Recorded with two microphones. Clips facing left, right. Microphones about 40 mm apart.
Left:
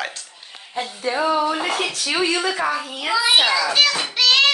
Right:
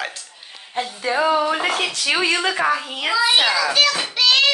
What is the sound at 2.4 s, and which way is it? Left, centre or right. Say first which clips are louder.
Speech: right 2 dB; right.